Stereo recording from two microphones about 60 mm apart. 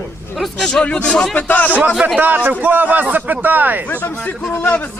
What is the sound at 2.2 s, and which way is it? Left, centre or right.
A man's voice, right.